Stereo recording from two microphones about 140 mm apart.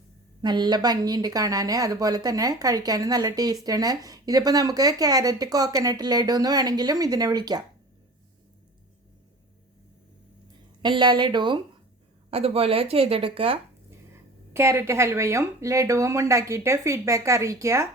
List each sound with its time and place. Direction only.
0.4 s speech: 30° right (ahead or behind)
10.8 s a woman's voice: 35° right (ahead or behind)
14.5 s speech: 20° right (ahead or behind)